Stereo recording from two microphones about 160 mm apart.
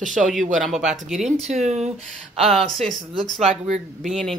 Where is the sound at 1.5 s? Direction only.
45° right (ahead or behind).